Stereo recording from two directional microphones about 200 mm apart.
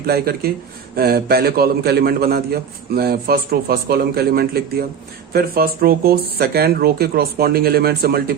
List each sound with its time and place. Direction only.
0.0 s a man's voice: 50° right (ahead or behind)